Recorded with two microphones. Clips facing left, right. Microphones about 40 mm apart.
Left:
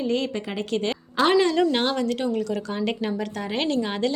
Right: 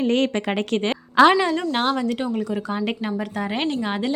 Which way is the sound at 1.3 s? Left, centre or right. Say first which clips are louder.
Left 1 dB; centre.